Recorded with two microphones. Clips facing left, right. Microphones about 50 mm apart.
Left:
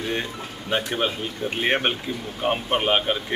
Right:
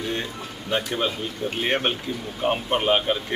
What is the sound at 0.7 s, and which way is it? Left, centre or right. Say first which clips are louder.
A man's voice: left 1 dB; centre.